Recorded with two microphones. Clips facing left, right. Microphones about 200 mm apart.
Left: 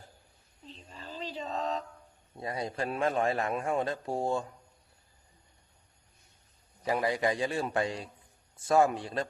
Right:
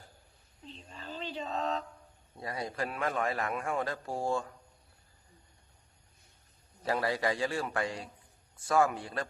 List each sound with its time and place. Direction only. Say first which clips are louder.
0.8 s a sound: even; centre (ahead or behind)
2.4 s a man's voice: left 2 dB; 25° left (ahead or behind)
6.8 s a man's voice: left 2 dB; 15° left (ahead or behind)